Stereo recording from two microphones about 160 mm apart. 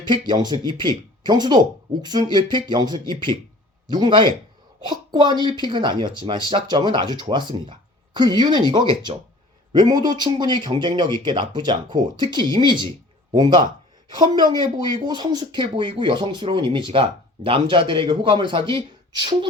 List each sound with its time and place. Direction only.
0.1 s speech: 30° right (ahead or behind)